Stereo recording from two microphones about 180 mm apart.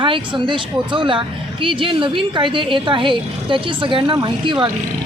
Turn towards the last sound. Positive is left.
turn(degrees=-25)  # may be behind; listen again after turning